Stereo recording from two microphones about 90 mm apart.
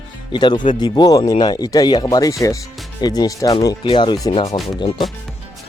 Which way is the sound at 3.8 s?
65° left (ahead or behind).